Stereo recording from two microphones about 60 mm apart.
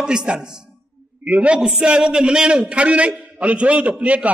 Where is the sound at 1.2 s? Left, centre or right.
Right.